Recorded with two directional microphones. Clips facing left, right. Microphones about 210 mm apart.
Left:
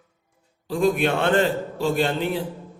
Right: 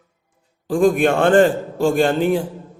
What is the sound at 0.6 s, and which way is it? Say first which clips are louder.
Speech: right 5 dB; 50° right (ahead or behind).